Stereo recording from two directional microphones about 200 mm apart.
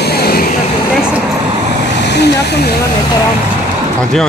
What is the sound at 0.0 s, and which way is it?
Vehicle, 50° left (ahead or behind).